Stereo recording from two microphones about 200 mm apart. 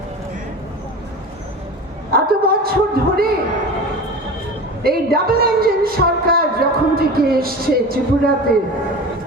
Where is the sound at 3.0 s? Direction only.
45° right (ahead or behind).